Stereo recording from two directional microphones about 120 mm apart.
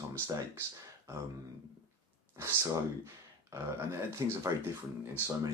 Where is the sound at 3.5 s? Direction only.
25° right (ahead or behind).